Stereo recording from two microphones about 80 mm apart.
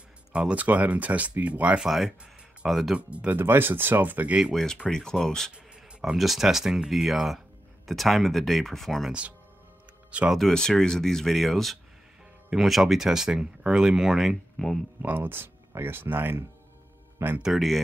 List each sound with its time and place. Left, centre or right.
0.3 s speech: centre
1.9 s speech: centre
3.0 s speech: centre
3.3 s speech: right
4.8 s speech: centre
10.3 s speech: centre
15.0 s speech: right
17.4 s speech: centre